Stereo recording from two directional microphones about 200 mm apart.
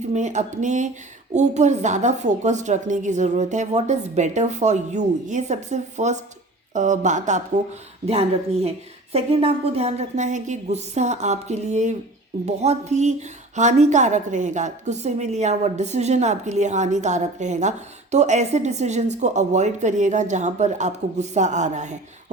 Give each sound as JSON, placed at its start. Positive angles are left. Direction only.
{"t": 0.1, "sound": "a woman's voice", "side_deg": -35}